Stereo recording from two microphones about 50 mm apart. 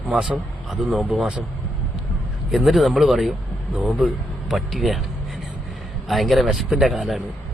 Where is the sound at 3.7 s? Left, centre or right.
Right.